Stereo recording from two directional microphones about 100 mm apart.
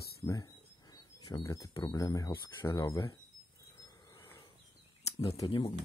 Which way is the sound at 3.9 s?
35° left (ahead or behind).